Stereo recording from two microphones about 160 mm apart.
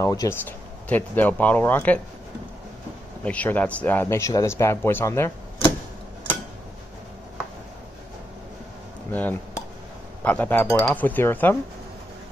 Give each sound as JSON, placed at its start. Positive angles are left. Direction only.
{"t": 0.0, "sound": "speech", "side_deg": 20}
{"t": 3.3, "sound": "speech", "side_deg": 10}
{"t": 9.1, "sound": "speech", "side_deg": 10}